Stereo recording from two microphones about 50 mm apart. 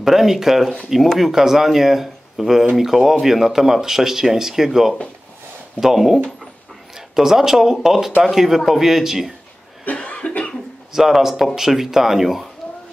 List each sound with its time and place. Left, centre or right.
0.0 s speech: centre
9.8 s cough: left
10.9 s speech: centre